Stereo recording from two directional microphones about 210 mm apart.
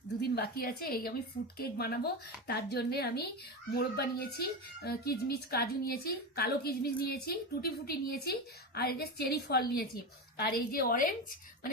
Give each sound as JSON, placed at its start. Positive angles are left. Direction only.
{"t": 0.2, "sound": "a woman's voice", "side_deg": 50}